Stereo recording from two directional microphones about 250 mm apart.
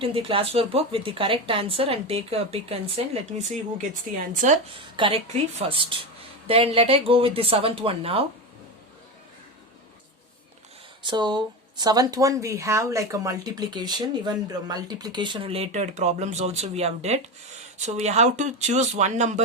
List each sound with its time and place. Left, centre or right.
0.0 s a woman's voice: right
11.0 s a woman's voice: centre